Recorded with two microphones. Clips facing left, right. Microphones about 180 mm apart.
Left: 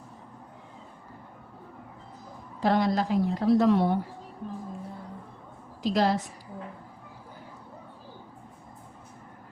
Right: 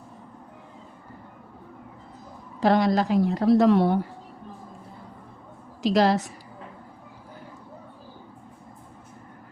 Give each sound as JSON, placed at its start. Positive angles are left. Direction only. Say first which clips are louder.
{"t": 2.6, "sound": "a woman's voice", "louder": "right 4 dB", "side_deg": -85}
{"t": 5.8, "sound": "a woman's voice", "louder": "right 4 dB", "side_deg": -85}